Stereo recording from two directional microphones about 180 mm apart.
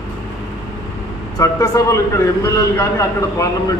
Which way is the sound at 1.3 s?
20° left (ahead or behind).